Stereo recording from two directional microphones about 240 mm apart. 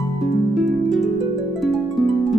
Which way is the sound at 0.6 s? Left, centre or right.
Centre.